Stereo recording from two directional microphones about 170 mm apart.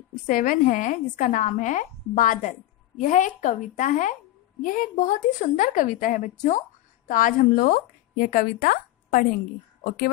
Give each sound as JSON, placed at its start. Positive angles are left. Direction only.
{"t": 0.3, "sound": "a woman's voice", "side_deg": 55}